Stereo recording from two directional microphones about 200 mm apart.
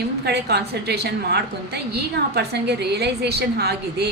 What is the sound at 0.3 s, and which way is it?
A woman's voice, 55° right (ahead or behind).